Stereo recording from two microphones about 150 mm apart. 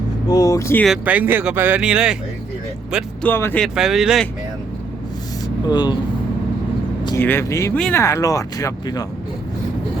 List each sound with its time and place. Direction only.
0.3 s speech: 25° left (ahead or behind)
0.9 s speech: 10° right (ahead or behind)
3.2 s speech: 15° left (ahead or behind)
3.6 s speech: centre (ahead or behind)
5.6 s speech: 25° left (ahead or behind)
7.2 s speech: 15° left (ahead or behind)